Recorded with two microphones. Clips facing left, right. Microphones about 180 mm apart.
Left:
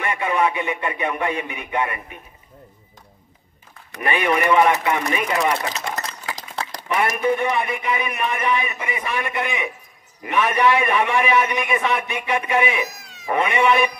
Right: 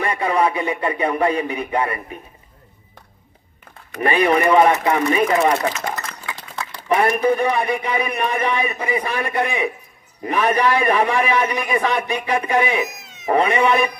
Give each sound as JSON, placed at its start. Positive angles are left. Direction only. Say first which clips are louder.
{"t": 0.0, "sound": "a man's voice", "louder": "right 2 dB", "side_deg": -35}
{"t": 4.0, "sound": "a man's voice", "louder": "right 4 dB", "side_deg": -35}
{"t": 5.8, "sound": "a sound", "louder": "right 1 dB", "side_deg": 35}
{"t": 7.0, "sound": "a man's voice", "louder": "right 2 dB", "side_deg": -35}
{"t": 12.9, "sound": "cat", "louder": "right 2 dB", "side_deg": -20}
{"t": 13.3, "sound": "a man's voice", "louder": "right 2 dB", "side_deg": -35}